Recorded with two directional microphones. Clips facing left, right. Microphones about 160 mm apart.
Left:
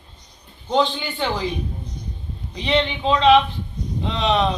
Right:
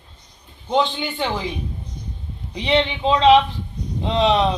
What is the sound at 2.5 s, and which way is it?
Speech, 25° right (ahead or behind).